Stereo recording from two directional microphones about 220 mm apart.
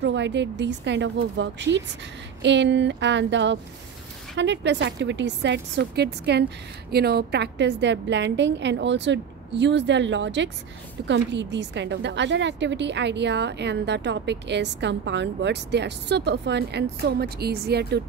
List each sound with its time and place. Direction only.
0.0 s a woman's voice: 55° right (ahead or behind)